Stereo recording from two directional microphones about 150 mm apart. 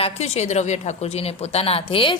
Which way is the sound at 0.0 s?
45° left (ahead or behind).